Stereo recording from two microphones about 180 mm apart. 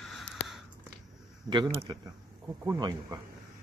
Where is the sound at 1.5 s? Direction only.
25° right (ahead or behind).